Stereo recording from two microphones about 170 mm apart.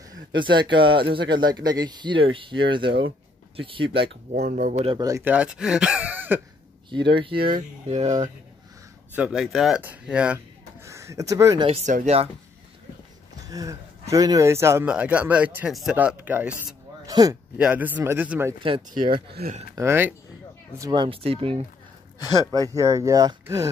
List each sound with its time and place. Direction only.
0.1 s speech: 25° right (ahead or behind)
4.1 s speech: 60° right (ahead or behind); by 4.9 s 45° right (ahead or behind)
4.9 s speech: 20° right (ahead or behind)
7.3 s speech: 55° right (ahead or behind)
9.1 s speech: 5° right (ahead or behind)
10.8 s speech: 15° right (ahead or behind)
11.6 s speech: 40° right (ahead or behind)
13.4 s speech: 20° right (ahead or behind)
17.6 s speech: 10° right (ahead or behind)
19.1 s speech: 65° right (ahead or behind)
19.7 s speech: 15° right (ahead or behind)
20.7 s speech: 25° right (ahead or behind)
22.2 s speech: 25° left (ahead or behind)
22.5 s speech: 20° right (ahead or behind)